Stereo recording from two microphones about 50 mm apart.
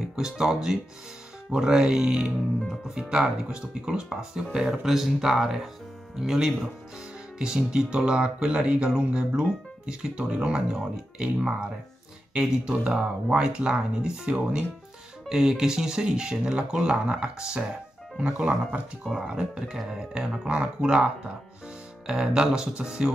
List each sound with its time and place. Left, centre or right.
0.1 s speech: centre
15.2 s speech: centre; by 18.3 s right
19.1 s speech: centre
22.0 s speech: centre